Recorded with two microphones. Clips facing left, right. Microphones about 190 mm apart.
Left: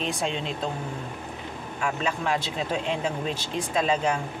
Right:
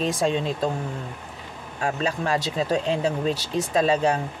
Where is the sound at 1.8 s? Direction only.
35° right (ahead or behind).